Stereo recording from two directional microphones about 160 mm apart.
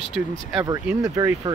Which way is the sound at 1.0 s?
20° right (ahead or behind).